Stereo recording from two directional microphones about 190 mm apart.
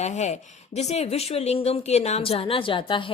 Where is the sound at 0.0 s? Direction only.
40° left (ahead or behind).